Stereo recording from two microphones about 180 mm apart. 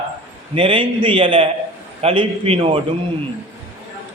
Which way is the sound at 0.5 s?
30° right (ahead or behind).